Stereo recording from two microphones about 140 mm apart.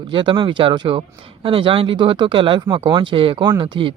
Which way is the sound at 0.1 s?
35° right (ahead or behind).